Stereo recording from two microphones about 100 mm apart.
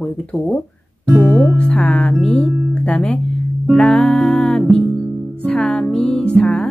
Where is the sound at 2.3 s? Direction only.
10° left (ahead or behind).